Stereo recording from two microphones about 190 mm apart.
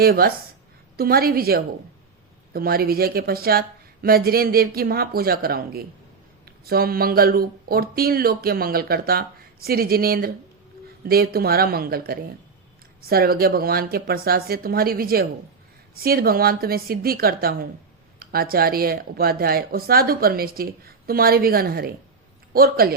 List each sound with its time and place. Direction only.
0.0 s speech: 50° right (ahead or behind)